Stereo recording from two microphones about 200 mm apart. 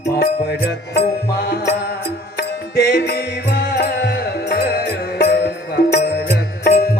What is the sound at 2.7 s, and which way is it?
Music, 55° left (ahead or behind).